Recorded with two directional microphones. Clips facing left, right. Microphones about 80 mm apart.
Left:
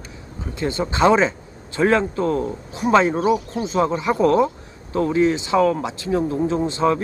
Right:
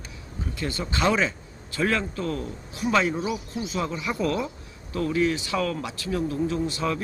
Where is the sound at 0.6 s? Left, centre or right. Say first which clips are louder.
Left 8 dB; left.